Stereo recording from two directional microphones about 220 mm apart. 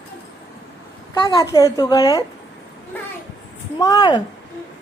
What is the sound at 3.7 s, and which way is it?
Speech, 15° left (ahead or behind).